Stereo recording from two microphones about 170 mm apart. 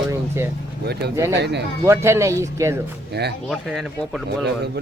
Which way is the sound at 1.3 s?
85° right.